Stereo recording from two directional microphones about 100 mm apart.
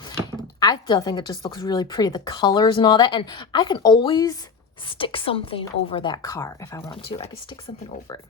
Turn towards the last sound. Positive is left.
turn(degrees=65)  # may be behind; listen again after turning